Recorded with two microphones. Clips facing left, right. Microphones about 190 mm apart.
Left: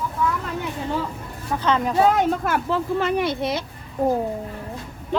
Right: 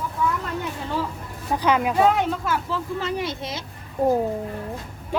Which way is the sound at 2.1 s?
50° left (ahead or behind).